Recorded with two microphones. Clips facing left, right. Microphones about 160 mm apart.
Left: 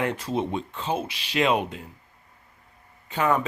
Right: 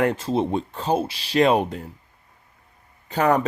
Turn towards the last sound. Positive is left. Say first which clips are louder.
# right 4 dB
turn(degrees=-40)  # may be behind; listen again after turning